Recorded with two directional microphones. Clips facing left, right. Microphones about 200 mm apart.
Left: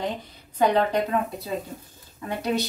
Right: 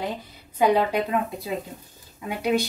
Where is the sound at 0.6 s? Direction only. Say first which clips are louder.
Right 1 dB; 10° right (ahead or behind).